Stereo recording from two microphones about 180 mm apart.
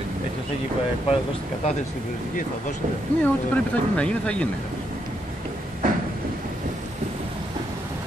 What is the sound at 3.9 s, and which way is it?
Speech, 5° left (ahead or behind).